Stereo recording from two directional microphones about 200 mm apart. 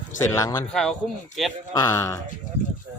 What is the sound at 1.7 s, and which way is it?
Speech, 20° left (ahead or behind).